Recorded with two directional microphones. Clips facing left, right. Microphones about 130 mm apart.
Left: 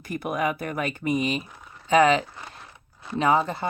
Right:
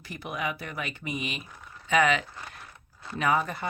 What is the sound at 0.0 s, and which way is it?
Speech, 50° left (ahead or behind).